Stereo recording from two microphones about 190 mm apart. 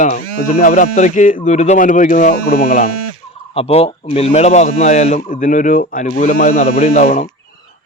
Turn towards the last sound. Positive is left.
turn(degrees=35)  # may be behind; listen again after turning